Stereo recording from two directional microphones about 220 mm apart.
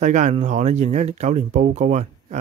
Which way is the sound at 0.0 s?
35° right (ahead or behind).